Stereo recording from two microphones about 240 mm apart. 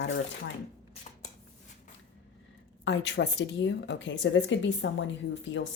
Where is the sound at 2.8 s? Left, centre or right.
Left.